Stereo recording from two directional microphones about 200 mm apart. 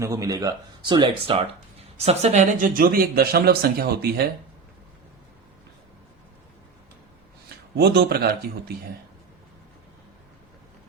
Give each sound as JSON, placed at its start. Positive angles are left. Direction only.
{"t": 0.0, "sound": "speech", "side_deg": -15}
{"t": 7.8, "sound": "speech", "side_deg": -50}